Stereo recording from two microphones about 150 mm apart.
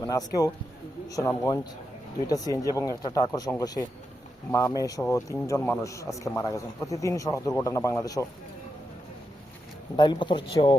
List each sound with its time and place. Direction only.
0.0 s speech: 25° left (ahead or behind)
4.5 s speech: 20° left (ahead or behind)
9.9 s speech: 30° left (ahead or behind)